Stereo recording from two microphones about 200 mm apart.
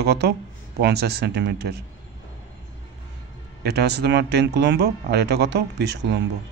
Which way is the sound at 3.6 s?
55° right (ahead or behind).